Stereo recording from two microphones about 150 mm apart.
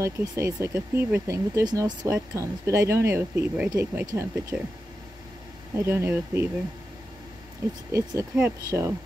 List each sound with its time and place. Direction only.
0.0 s speech: 20° right (ahead or behind)
3.7 s speech: 25° right (ahead or behind)
5.8 s speech: 15° right (ahead or behind)
7.9 s speech: 20° right (ahead or behind)